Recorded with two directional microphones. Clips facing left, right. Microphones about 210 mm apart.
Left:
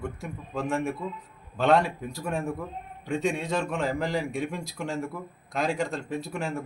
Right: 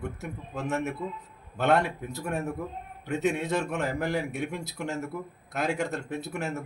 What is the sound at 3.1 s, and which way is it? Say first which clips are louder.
A man's voice: even; 5° right (ahead or behind).